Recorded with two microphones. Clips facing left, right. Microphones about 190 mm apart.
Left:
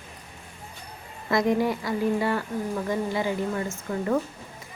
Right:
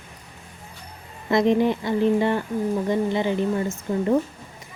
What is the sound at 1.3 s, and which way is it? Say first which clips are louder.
Speech: right 4 dB; 25° right (ahead or behind).